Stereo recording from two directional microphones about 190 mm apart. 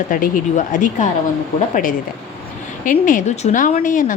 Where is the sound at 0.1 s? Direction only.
45° left (ahead or behind).